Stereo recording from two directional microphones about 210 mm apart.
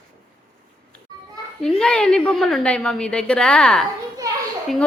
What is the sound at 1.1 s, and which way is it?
Children playing, 20° right (ahead or behind).